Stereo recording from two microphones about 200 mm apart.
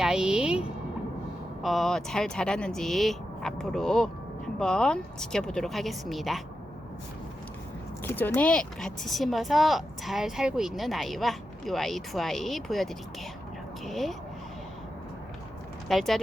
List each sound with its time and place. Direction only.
0.0 s a sound: 5° right (ahead or behind)
1.6 s a woman's voice: centre (ahead or behind)
8.0 s a woman's voice: 10° left (ahead or behind)
15.9 s a woman's voice: centre (ahead or behind)